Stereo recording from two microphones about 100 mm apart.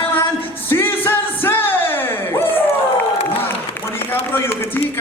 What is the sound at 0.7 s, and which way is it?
Music, 20° left (ahead or behind).